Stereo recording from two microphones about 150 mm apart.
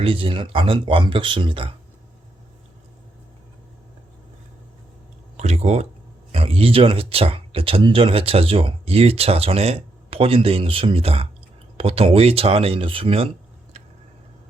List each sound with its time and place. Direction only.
0.0 s speech: 35° right (ahead or behind)
5.4 s a sound: 50° right (ahead or behind)
6.3 s speech: 40° right (ahead or behind)